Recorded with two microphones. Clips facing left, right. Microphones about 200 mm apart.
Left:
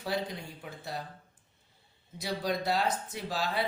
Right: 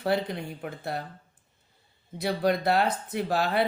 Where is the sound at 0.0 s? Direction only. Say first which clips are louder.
Right 7 dB; 60° right (ahead or behind).